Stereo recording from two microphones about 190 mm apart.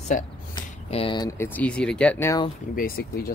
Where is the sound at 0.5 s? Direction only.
25° left (ahead or behind).